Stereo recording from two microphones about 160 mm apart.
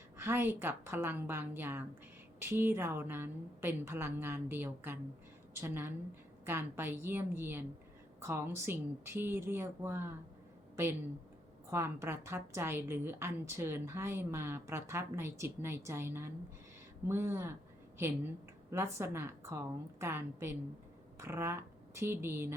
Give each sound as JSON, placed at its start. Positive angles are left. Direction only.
{"t": 0.2, "sound": "a woman's voice", "side_deg": -15}
{"t": 11.7, "sound": "a woman's voice", "side_deg": -15}
{"t": 18.7, "sound": "a woman's voice", "side_deg": -15}